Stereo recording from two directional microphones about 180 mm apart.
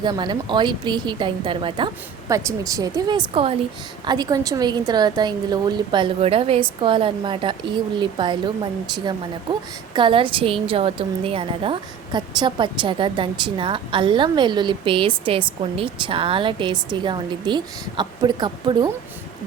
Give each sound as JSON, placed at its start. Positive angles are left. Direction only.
{"t": 0.0, "sound": "a woman's voice", "side_deg": -25}